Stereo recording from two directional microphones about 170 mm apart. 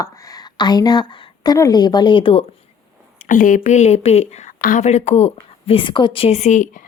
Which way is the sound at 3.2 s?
50° left (ahead or behind).